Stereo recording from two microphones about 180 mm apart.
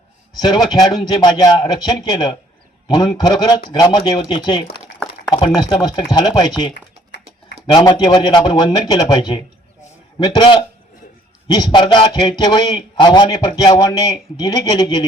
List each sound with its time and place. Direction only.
0.3 s a man's voice: 25° left (ahead or behind)
6.1 s a man's voice: 25° left (ahead or behind)
7.7 s a man's voice: 25° left (ahead or behind)